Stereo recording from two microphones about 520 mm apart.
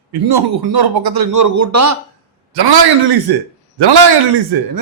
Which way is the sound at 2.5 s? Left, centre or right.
Right.